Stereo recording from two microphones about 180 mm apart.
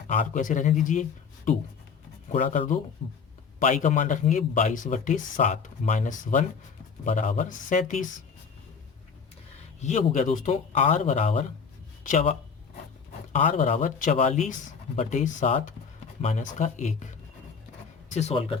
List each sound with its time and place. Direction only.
0.1 s speech: 50° left (ahead or behind)
2.3 s speech: 45° left (ahead or behind)
9.8 s speech: 40° left (ahead or behind)